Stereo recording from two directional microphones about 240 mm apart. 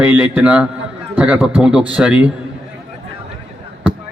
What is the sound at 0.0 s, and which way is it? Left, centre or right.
A man's voice, centre.